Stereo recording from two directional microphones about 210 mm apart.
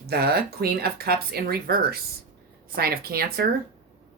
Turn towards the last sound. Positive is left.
turn(degrees=-45)  # may be behind; listen again after turning